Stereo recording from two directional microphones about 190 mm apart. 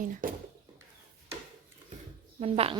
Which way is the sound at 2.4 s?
30° right (ahead or behind).